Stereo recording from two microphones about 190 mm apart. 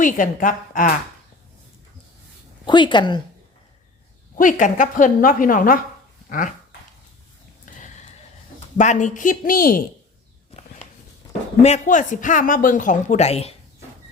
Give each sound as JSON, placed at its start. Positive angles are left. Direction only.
{"t": 0.0, "sound": "speech", "side_deg": 45}
{"t": 2.6, "sound": "a woman's voice", "side_deg": 25}
{"t": 4.4, "sound": "speech", "side_deg": 45}
{"t": 6.2, "sound": "dog", "side_deg": 45}
{"t": 8.8, "sound": "speech", "side_deg": 40}
{"t": 11.6, "sound": "speech", "side_deg": 40}